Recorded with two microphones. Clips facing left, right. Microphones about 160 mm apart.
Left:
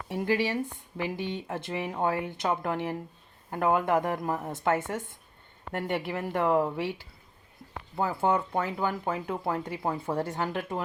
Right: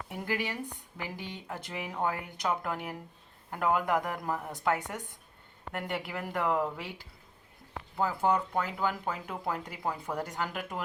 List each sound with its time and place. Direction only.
0.1 s speech: 25° left (ahead or behind)
7.9 s speech: 25° left (ahead or behind)